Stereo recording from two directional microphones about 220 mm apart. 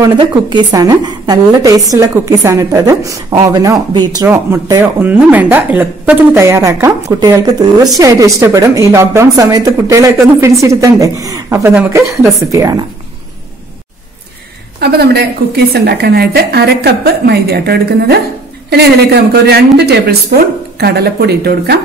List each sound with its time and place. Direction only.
0.0 s a woman's voice: 20° right (ahead or behind)
14.8 s a woman's voice: 45° right (ahead or behind)